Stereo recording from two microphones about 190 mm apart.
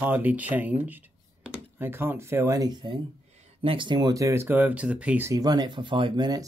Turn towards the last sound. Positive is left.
turn(degrees=-20)  # may be behind; listen again after turning